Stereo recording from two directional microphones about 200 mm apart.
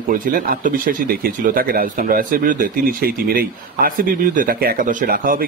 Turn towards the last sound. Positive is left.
turn(degrees=-45)  # may be behind; listen again after turning